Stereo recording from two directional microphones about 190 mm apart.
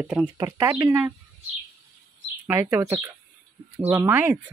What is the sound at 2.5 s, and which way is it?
Speech, 10° right (ahead or behind).